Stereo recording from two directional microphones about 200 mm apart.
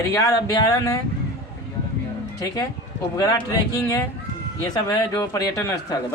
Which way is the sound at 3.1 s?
20° left (ahead or behind).